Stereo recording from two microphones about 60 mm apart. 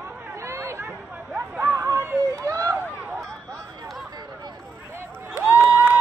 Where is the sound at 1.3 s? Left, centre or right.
Right.